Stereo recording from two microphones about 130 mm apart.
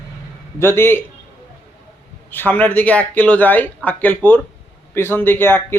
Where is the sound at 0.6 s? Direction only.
20° left (ahead or behind).